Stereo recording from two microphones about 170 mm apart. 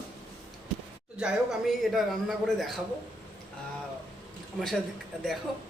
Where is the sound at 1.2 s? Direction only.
Centre (ahead or behind).